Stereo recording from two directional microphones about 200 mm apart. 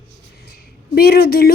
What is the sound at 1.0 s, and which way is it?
Speech, 50° left (ahead or behind).